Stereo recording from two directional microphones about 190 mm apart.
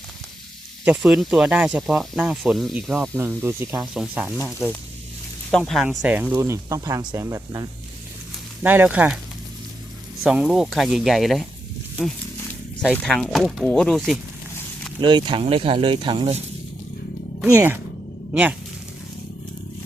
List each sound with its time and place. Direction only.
0.9 s speech: 5° right (ahead or behind)
3.2 s speech: 15° right (ahead or behind)
5.5 s speech: 5° left (ahead or behind)
10.2 s speech: centre (ahead or behind)
12.9 s speech: 5° left (ahead or behind)
15.0 s speech: 25° right (ahead or behind)
17.4 s speech: 10° right (ahead or behind)